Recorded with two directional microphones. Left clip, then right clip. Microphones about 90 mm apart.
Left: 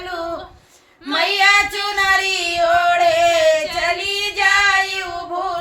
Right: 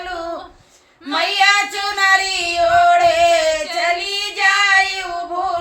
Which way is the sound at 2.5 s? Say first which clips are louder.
Right 4 dB; 15° right (ahead or behind).